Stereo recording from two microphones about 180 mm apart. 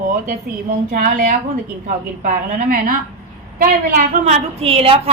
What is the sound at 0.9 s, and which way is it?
A woman's voice, 50° right (ahead or behind).